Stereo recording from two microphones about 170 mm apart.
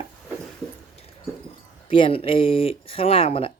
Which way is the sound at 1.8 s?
30° left (ahead or behind).